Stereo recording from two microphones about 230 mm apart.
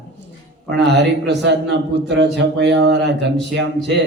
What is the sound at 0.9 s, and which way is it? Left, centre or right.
A man's voice, right.